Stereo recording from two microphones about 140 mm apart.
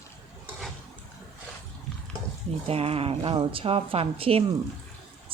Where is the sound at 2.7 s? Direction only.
45° right (ahead or behind).